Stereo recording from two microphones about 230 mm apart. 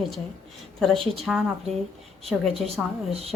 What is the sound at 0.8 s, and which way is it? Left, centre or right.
A woman's voice, centre.